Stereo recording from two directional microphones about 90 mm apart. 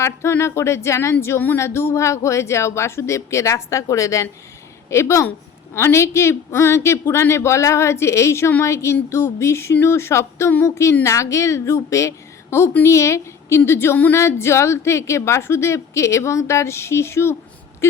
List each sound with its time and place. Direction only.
0.0 s a woman's voice: 30° left (ahead or behind)